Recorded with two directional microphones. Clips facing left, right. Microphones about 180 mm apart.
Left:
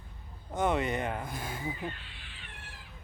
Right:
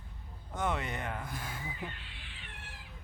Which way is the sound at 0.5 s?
20° left (ahead or behind).